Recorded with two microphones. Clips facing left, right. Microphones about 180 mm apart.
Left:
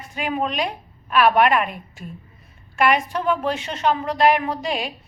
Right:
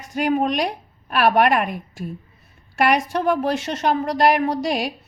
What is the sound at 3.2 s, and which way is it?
Speech, 40° right (ahead or behind).